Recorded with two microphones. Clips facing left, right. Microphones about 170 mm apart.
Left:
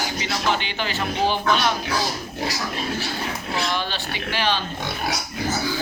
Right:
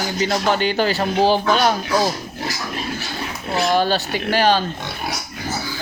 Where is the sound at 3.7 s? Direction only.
45° right (ahead or behind).